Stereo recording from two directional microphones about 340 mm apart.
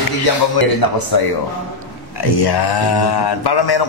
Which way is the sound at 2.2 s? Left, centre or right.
Left.